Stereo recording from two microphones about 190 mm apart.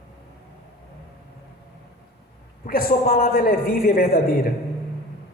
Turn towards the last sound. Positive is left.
turn(degrees=50)  # may be behind; listen again after turning